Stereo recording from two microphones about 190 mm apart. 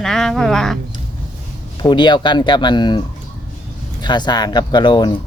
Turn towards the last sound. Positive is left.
turn(degrees=25)  # may be behind; listen again after turning